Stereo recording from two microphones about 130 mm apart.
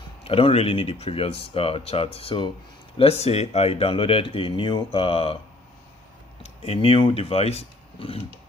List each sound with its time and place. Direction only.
0.2 s speech: 45° left (ahead or behind)
6.4 s speech: 50° left (ahead or behind)